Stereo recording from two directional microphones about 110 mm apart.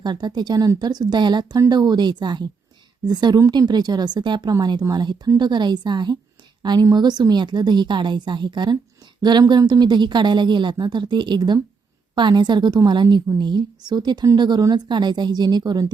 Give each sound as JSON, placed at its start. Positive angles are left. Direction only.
{"t": 0.0, "sound": "a woman's voice", "side_deg": -40}